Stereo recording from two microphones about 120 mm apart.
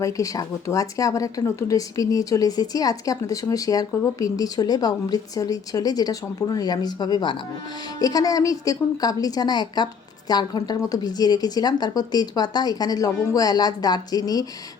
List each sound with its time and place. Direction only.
0.0 s speech: 25° left (ahead or behind)